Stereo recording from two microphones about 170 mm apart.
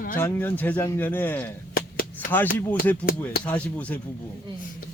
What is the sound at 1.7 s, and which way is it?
Cap gun, 60° left (ahead or behind).